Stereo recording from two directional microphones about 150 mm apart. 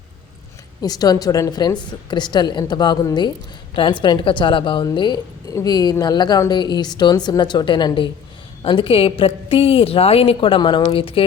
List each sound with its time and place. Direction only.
0.8 s a woman's voice: 25° left (ahead or behind)